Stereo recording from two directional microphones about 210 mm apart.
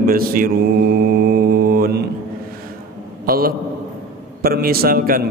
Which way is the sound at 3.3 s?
45° right (ahead or behind).